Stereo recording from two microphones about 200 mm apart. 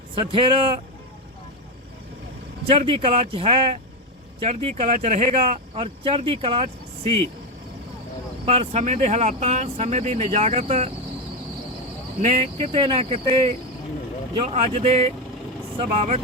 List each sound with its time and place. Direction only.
0.2 s speech: 25° right (ahead or behind)
2.6 s speech: 30° right (ahead or behind)
8.4 s speech: 30° right (ahead or behind)
12.2 s speech: 30° right (ahead or behind)